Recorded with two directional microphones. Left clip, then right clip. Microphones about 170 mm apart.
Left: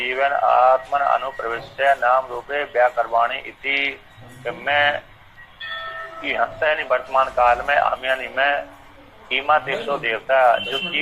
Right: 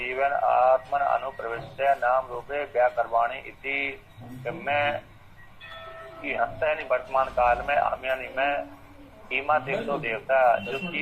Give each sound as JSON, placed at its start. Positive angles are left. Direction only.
{"t": 0.0, "sound": "speech", "side_deg": 25}